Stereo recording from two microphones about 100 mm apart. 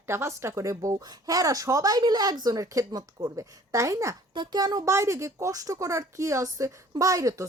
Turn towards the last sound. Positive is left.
turn(degrees=-35)  # may be behind; listen again after turning